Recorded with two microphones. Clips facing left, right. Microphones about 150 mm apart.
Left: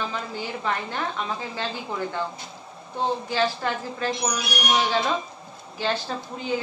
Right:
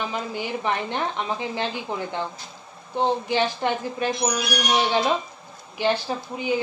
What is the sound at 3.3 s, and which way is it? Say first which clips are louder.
A woman's voice: right 2 dB; 20° right (ahead or behind).